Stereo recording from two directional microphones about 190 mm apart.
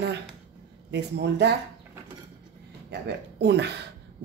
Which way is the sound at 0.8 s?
60° right (ahead or behind).